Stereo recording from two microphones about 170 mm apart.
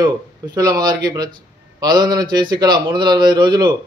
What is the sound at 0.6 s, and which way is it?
Speech, 20° right (ahead or behind).